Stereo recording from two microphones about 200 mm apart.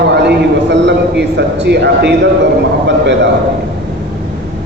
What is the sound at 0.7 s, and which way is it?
A man's voice, 60° right (ahead or behind).